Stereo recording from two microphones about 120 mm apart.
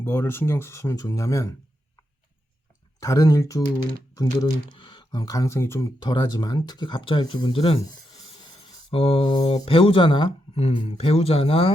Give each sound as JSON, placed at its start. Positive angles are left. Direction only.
{"t": 0.0, "sound": "speech", "side_deg": 20}
{"t": 3.0, "sound": "speech", "side_deg": 30}
{"t": 4.7, "sound": "speech", "side_deg": 40}
{"t": 6.0, "sound": "speech", "side_deg": 35}
{"t": 8.9, "sound": "speech", "side_deg": 55}
{"t": 9.3, "sound": "speech", "side_deg": 35}
{"t": 9.6, "sound": "speech", "side_deg": 50}